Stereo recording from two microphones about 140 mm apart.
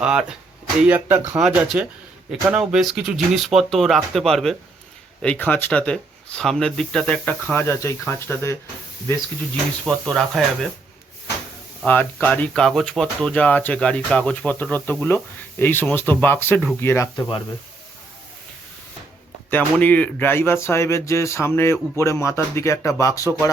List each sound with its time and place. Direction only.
0.0 s speech: 5° right (ahead or behind)
1.4 s speech: 5° right (ahead or behind)
7.5 s speech: 20° left (ahead or behind)
9.8 s speech: centre (ahead or behind)
11.9 s speech: 10° left (ahead or behind)
17.2 s speech: 35° left (ahead or behind)
19.5 s speech: 10° left (ahead or behind)